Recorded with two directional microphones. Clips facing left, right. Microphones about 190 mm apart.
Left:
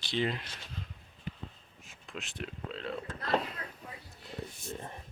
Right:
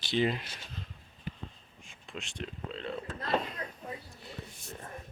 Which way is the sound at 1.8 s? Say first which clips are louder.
Even; centre (ahead or behind).